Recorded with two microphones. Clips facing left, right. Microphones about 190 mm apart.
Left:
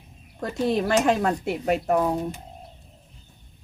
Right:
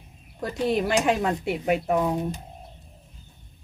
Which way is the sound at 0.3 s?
Centre (ahead or behind).